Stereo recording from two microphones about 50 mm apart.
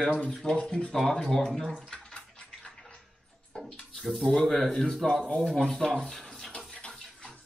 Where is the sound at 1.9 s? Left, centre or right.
Centre.